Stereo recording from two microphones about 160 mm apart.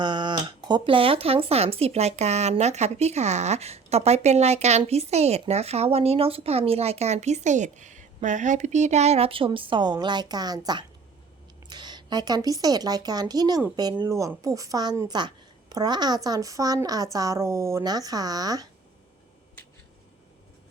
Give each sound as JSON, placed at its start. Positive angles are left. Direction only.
{"t": 0.0, "sound": "a woman's voice", "side_deg": -30}